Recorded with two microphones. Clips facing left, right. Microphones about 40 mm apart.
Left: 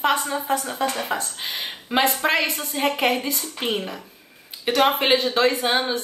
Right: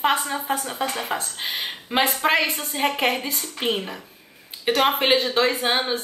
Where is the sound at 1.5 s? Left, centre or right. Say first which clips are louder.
Right 3 dB; right.